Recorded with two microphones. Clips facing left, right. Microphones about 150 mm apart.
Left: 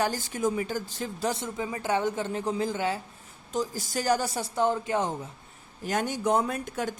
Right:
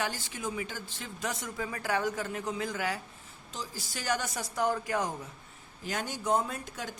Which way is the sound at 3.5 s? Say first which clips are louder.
Left 11 dB; 45° left (ahead or behind).